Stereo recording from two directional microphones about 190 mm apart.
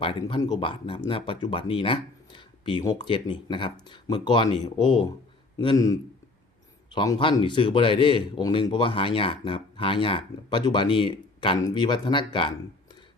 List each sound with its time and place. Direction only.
0.0 s a man's voice: 25° left (ahead or behind)